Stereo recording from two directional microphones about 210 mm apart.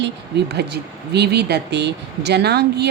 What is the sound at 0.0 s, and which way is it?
Speech, 50° right (ahead or behind).